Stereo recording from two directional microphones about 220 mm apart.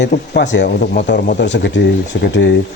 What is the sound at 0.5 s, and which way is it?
A man's voice, 50° left (ahead or behind).